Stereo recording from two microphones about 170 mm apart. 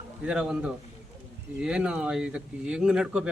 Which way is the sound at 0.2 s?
5° right (ahead or behind).